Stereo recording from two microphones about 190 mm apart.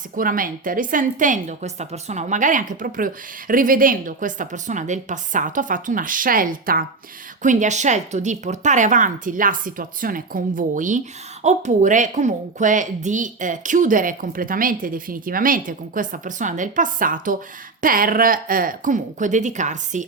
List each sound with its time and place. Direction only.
0.2 s a woman's voice: 45° right (ahead or behind)